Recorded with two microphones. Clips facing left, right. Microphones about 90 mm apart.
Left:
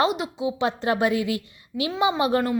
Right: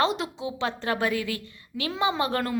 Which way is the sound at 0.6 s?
20° left (ahead or behind).